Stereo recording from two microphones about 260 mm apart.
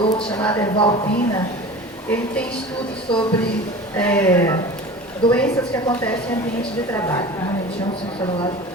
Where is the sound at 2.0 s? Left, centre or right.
Centre.